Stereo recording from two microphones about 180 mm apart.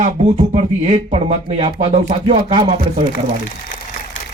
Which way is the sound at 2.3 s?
30° right (ahead or behind).